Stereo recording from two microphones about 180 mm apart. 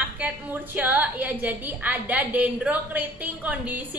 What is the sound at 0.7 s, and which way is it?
A woman's voice, 10° right (ahead or behind).